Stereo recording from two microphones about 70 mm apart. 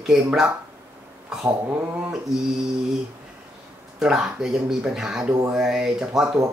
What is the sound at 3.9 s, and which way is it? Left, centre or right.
Speech, centre.